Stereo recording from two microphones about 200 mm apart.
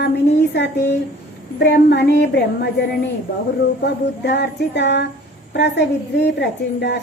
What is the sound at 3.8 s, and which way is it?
Speech, 60° left (ahead or behind).